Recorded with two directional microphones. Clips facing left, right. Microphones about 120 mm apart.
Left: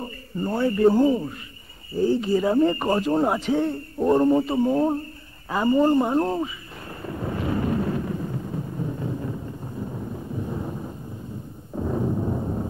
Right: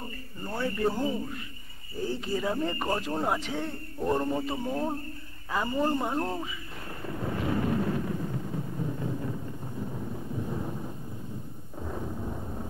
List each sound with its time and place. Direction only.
0.0 s speech: 30° left (ahead or behind)
2.2 s speech: 30° left (ahead or behind)
7.0 s vehicle: 35° left (ahead or behind)
9.8 s a sound: 40° left (ahead or behind)